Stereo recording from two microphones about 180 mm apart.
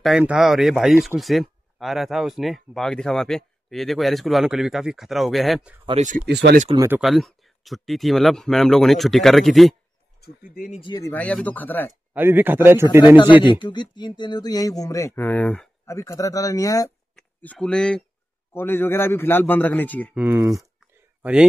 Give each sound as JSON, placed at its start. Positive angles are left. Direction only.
{"t": 0.0, "sound": "speech", "side_deg": -5}
{"t": 5.9, "sound": "speech", "side_deg": -40}
{"t": 6.2, "sound": "speech", "side_deg": -70}
{"t": 6.9, "sound": "speech", "side_deg": 0}
{"t": 10.2, "sound": "speech", "side_deg": 55}
{"t": 10.8, "sound": "speech", "side_deg": 25}
{"t": 11.1, "sound": "a man's voice", "side_deg": 5}
{"t": 12.1, "sound": "speech", "side_deg": -10}
{"t": 13.0, "sound": "speech", "side_deg": 25}
{"t": 15.8, "sound": "speech", "side_deg": 15}
{"t": 17.1, "sound": "a man's voice", "side_deg": 5}
{"t": 20.2, "sound": "speech", "side_deg": -15}
{"t": 21.2, "sound": "speech", "side_deg": -5}